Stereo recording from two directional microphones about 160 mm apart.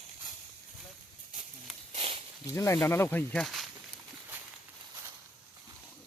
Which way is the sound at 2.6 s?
15° left (ahead or behind).